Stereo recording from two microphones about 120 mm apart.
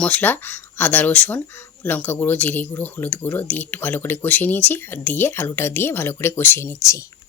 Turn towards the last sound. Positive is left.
turn(degrees=25)  # may be behind; listen again after turning